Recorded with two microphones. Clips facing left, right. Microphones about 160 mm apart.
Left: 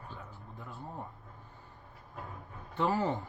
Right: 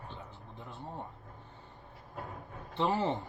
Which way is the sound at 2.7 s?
25° right (ahead or behind).